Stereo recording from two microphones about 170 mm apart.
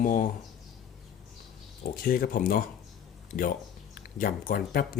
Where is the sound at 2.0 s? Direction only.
60° left (ahead or behind).